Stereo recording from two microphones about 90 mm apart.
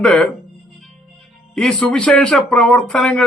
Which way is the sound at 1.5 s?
10° left (ahead or behind).